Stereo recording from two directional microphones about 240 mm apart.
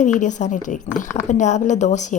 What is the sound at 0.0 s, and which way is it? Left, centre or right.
A woman's voice, left.